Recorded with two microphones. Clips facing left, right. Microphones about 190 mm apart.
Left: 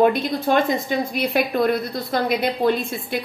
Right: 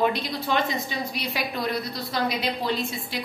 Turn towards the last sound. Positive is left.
turn(degrees=55)  # may be behind; listen again after turning